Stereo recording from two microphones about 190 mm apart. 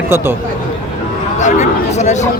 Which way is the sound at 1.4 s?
40° left (ahead or behind).